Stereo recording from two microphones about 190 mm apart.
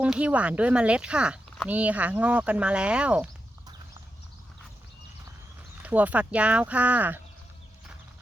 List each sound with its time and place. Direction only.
0.0 s speech: 5° right (ahead or behind)
5.8 s speech: 10° right (ahead or behind)